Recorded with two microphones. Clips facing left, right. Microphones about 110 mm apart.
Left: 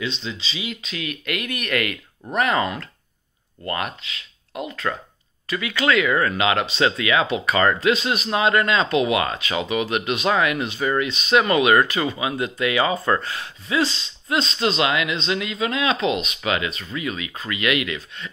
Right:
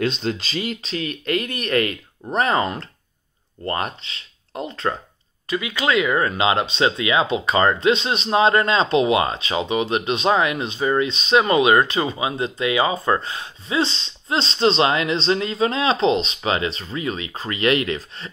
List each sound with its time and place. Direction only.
0.0 s speech: 50° right (ahead or behind)
0.8 s speech: 35° right (ahead or behind)